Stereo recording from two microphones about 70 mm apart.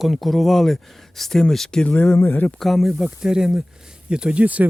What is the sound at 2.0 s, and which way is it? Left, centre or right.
Speech, left.